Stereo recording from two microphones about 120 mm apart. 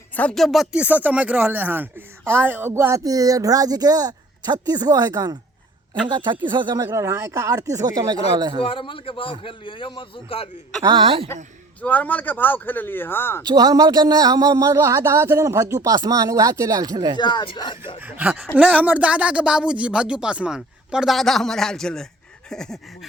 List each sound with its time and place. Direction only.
0.2 s speech: 5° left (ahead or behind); by 6.8 s 40° right (ahead or behind)
6.8 s speech: 25° right (ahead or behind)
8.6 s a man's voice: 45° left (ahead or behind)
10.8 s a woman's voice: 45° right (ahead or behind)
11.8 s speech: 15° left (ahead or behind)
13.4 s speech: 30° right (ahead or behind)
17.2 s speech: 40° left (ahead or behind)
18.0 s speech: 15° right (ahead or behind); by 22.0 s 5° left (ahead or behind)
22.4 s a sound: 5° left (ahead or behind)